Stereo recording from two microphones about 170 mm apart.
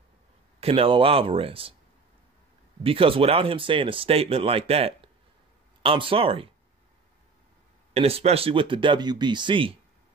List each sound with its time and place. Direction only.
0.6 s speech: 35° right (ahead or behind)
2.8 s speech: 35° right (ahead or behind)
7.9 s speech: 35° right (ahead or behind)